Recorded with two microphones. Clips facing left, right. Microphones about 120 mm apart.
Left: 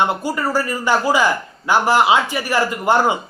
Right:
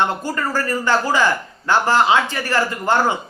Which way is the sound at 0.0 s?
10° left (ahead or behind).